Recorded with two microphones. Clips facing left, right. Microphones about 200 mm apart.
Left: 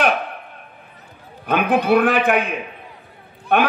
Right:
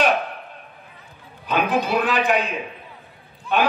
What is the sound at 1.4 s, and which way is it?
A man's voice, 60° left (ahead or behind).